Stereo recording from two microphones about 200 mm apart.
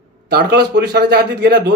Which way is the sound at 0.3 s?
50° right (ahead or behind).